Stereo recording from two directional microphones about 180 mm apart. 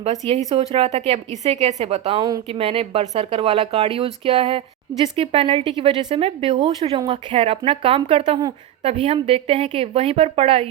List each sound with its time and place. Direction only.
0.0 s speech: 35° right (ahead or behind)